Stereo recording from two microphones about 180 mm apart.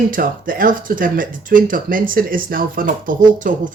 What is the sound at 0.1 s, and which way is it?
Speech, 50° right (ahead or behind).